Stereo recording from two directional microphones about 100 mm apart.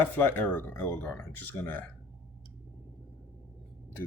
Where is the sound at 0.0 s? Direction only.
20° left (ahead or behind).